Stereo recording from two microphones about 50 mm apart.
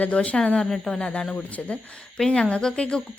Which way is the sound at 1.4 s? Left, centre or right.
Left.